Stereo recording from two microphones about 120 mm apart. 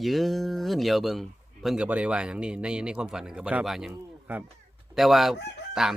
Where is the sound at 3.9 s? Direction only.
15° right (ahead or behind).